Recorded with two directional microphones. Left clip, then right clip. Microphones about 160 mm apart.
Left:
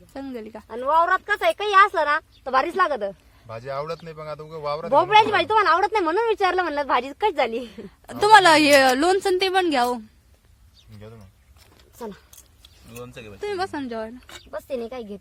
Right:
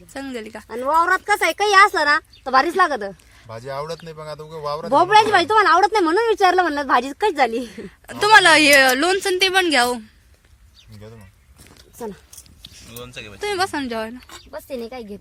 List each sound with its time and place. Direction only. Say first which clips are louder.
0.1 s speech: right 4 dB; 5° left (ahead or behind)
0.7 s speech: right 2 dB; 90° right; by 3.2 s 70° right (ahead or behind)
3.4 s speech: right 1 dB; centre (ahead or behind)
4.9 s speech: right 3 dB; 85° right
8.0 s a woman's voice: right 1 dB; 25° left (ahead or behind)
12.6 s speech: right 2 dB; 60° left (ahead or behind)
13.4 s speech: right 5 dB; 10° right (ahead or behind)
14.5 s speech: left 1 dB; 15° left (ahead or behind)